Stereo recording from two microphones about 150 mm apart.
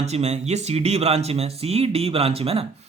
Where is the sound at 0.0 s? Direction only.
45° right (ahead or behind).